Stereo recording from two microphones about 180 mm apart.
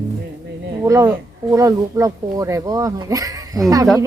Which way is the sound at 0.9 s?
15° right (ahead or behind).